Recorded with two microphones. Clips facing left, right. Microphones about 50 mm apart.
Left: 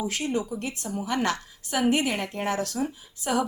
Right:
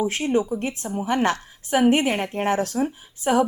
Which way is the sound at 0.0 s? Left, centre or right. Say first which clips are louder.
Right 6 dB; right.